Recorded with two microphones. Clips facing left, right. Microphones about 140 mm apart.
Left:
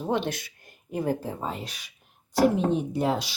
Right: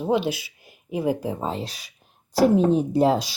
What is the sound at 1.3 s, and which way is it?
Speech, 25° right (ahead or behind).